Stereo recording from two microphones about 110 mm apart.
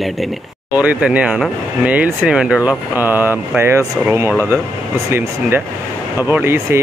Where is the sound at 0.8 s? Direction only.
15° right (ahead or behind).